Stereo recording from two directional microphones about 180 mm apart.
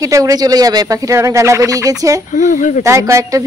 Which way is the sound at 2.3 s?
45° left (ahead or behind).